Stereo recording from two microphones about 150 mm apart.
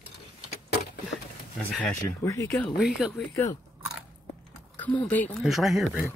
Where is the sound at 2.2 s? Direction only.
20° left (ahead or behind).